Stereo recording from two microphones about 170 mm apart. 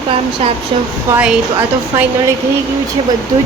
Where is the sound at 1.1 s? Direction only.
5° right (ahead or behind).